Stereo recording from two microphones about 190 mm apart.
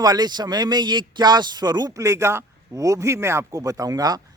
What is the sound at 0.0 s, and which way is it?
A man's voice, 20° right (ahead or behind).